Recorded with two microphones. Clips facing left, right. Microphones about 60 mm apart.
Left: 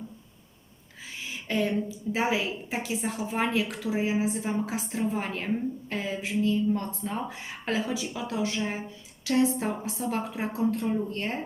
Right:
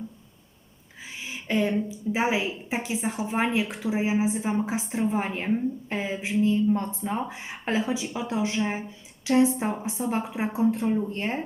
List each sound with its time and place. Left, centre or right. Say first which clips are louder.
1.3 s a woman's voice: right 3 dB; centre